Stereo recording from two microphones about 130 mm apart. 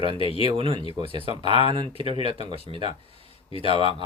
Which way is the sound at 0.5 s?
45° right (ahead or behind).